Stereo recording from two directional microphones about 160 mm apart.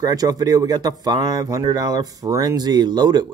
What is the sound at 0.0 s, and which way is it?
Speech, 25° right (ahead or behind).